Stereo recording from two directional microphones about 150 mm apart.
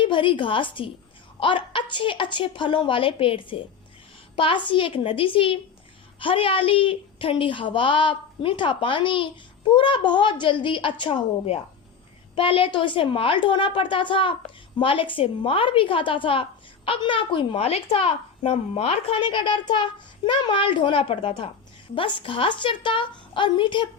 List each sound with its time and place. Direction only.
0.0 s a woman's voice: 35° left (ahead or behind)